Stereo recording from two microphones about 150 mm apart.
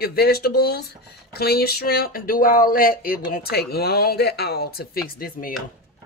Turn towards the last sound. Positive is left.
turn(degrees=70)  # may be behind; listen again after turning